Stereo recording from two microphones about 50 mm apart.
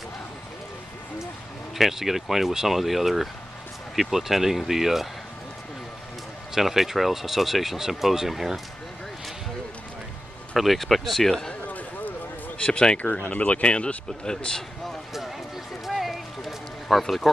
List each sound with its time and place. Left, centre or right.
1.8 s speech: centre
6.5 s speech: centre
10.5 s speech: centre
12.6 s speech: centre
15.8 s a sound: centre
16.8 s speech: centre